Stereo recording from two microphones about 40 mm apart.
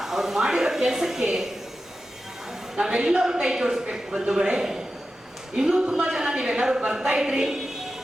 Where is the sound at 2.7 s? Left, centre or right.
Right.